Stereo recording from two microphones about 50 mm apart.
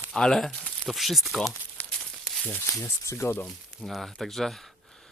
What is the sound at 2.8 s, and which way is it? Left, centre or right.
Speech, left.